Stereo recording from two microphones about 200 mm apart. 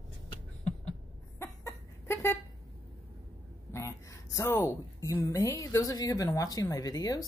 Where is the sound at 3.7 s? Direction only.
15° left (ahead or behind).